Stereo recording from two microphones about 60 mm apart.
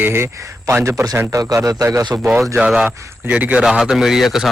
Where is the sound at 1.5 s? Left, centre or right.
Right.